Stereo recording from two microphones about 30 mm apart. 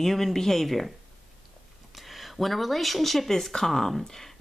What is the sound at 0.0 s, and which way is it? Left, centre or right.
Speech, centre.